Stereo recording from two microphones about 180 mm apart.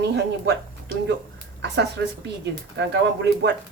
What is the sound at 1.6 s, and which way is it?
Speech, 70° right (ahead or behind).